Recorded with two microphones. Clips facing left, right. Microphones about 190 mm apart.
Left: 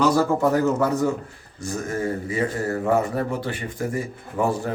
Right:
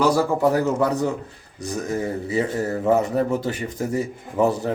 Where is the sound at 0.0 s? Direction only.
10° right (ahead or behind).